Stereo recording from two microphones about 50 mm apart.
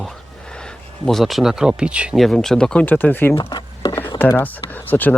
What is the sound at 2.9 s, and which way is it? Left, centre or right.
Speech, left.